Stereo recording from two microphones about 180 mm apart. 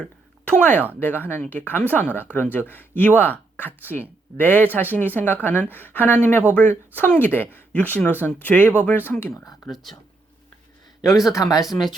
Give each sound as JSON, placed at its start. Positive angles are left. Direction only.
{"t": 0.5, "sound": "speech", "side_deg": 10}
{"t": 9.6, "sound": "speech", "side_deg": 0}
{"t": 11.3, "sound": "speech", "side_deg": 20}
{"t": 11.6, "sound": "speech", "side_deg": 0}